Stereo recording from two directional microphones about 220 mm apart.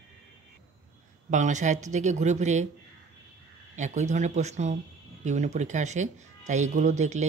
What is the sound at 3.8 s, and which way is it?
Speech, 30° right (ahead or behind).